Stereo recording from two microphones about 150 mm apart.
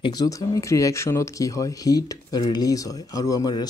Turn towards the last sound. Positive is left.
turn(degrees=25)  # may be behind; listen again after turning